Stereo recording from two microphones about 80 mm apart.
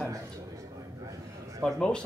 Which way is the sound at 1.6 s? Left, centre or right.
Centre.